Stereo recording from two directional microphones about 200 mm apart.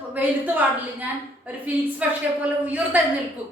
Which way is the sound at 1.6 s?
5° right (ahead or behind).